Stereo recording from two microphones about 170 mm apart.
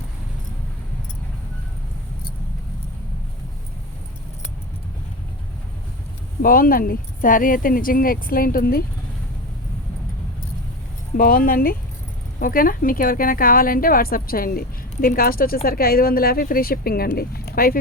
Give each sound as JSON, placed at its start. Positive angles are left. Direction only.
{"t": 6.4, "sound": "speech", "side_deg": 55}
{"t": 11.2, "sound": "speech", "side_deg": 55}